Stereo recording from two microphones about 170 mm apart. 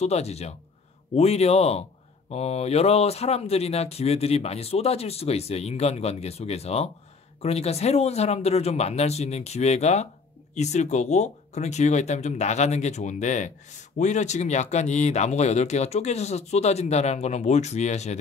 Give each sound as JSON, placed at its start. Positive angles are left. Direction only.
{"t": 0.0, "sound": "speech", "side_deg": 40}